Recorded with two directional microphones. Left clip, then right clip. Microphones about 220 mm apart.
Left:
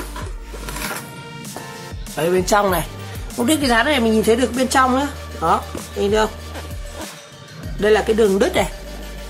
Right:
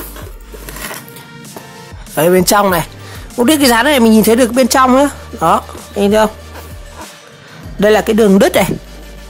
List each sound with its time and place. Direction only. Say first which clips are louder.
2.1 s a woman's voice: right 7 dB; 45° right (ahead or behind)
2.6 s speech: right 6 dB; 30° right (ahead or behind)
3.4 s a woman's voice: right 6 dB; 45° right (ahead or behind)
7.8 s a woman's voice: right 5 dB; 45° right (ahead or behind)